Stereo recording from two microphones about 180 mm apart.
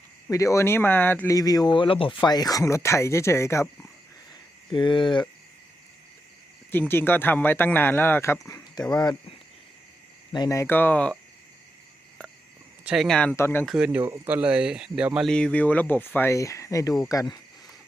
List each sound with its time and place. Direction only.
0.3 s speech: 15° left (ahead or behind)
4.7 s speech: 25° left (ahead or behind)
6.7 s speech: 10° left (ahead or behind)
8.8 s speech: 5° left (ahead or behind)
10.3 s speech: 20° left (ahead or behind)
12.8 s speech: centre (ahead or behind); by 13.7 s 15° left (ahead or behind)
13.7 s speech: 5° right (ahead or behind); by 17.2 s 20° left (ahead or behind)